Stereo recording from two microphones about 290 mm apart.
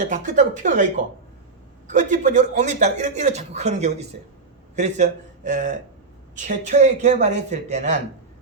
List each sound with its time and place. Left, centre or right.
0.0 s speech: right
1.9 s a man's voice: right